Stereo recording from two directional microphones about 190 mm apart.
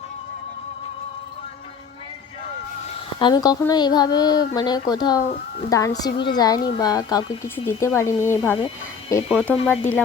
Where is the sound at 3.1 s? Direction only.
25° left (ahead or behind).